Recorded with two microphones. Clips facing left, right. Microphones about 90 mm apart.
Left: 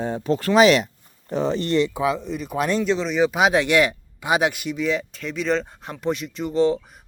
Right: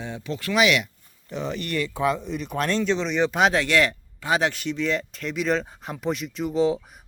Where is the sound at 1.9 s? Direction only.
5° left (ahead or behind).